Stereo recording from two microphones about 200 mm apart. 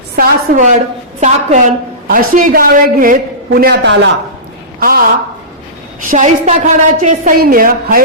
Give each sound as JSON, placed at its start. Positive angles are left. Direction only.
{"t": 0.2, "sound": "a woman's voice", "side_deg": -40}
{"t": 6.1, "sound": "a woman's voice", "side_deg": -40}